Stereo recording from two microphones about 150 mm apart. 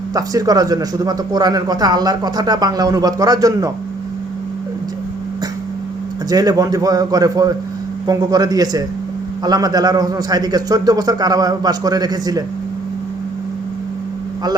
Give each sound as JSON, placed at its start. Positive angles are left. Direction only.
{"t": 0.1, "sound": "speech", "side_deg": -25}
{"t": 6.3, "sound": "speech", "side_deg": -25}